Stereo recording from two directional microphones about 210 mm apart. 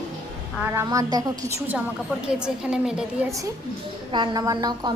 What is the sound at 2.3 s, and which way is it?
Speech, 5° right (ahead or behind).